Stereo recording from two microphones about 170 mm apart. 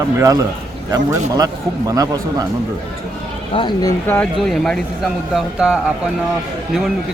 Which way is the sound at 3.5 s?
25° left (ahead or behind).